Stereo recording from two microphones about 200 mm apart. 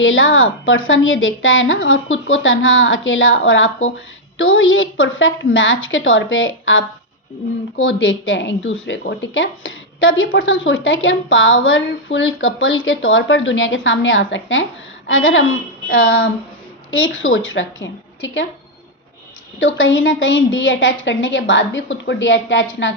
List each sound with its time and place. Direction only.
0.0 s speech: 75° left (ahead or behind)
19.5 s speech: 70° left (ahead or behind)